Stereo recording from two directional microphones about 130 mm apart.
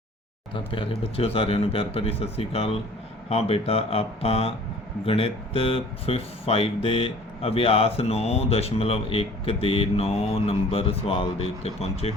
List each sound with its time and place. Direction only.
0.5 s speech: 40° left (ahead or behind)